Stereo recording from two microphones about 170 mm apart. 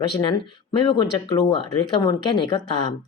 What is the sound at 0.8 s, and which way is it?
Speech, 25° left (ahead or behind).